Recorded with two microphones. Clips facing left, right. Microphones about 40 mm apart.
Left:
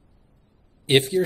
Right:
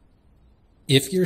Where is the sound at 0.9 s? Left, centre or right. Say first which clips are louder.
Left 1 dB; centre.